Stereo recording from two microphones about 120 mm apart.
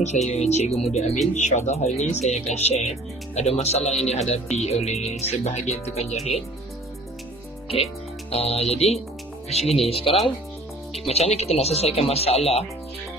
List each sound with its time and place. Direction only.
0.3 s speech: 65° left (ahead or behind)
7.6 s speech: 55° left (ahead or behind)